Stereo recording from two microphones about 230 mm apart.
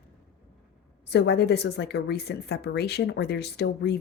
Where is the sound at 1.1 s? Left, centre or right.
Left.